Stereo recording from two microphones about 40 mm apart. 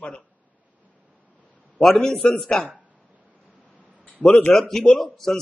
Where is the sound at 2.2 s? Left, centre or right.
Left.